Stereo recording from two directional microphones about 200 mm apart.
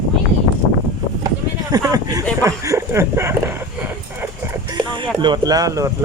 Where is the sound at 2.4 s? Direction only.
15° right (ahead or behind).